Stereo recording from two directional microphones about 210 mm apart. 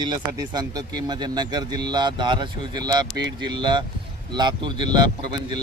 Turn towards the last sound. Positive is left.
turn(degrees=-20)  # may be behind; listen again after turning